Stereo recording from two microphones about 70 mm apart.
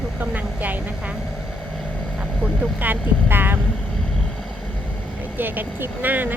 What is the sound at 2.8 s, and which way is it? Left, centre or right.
Speech, right.